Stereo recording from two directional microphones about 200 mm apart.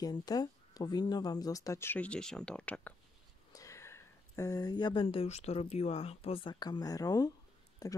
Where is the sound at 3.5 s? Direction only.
15° left (ahead or behind).